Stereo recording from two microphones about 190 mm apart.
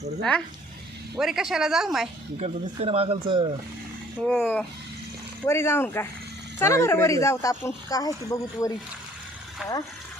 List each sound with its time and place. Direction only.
0.2 s speech: 5° left (ahead or behind)
2.4 s speech: 30° right (ahead or behind)
4.3 s speech: 5° left (ahead or behind)